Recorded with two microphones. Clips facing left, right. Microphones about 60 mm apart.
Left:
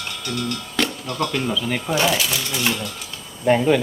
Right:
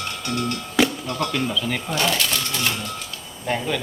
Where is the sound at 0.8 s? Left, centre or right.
Centre.